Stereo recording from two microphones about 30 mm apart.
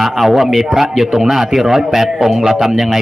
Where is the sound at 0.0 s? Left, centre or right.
Centre.